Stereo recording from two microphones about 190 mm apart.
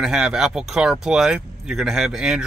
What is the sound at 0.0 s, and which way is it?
Speech, 5° right (ahead or behind).